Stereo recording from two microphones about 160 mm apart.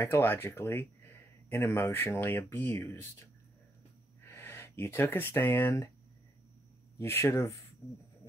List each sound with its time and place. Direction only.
0.0 s speech: 15° left (ahead or behind)
7.0 s speech: 15° left (ahead or behind)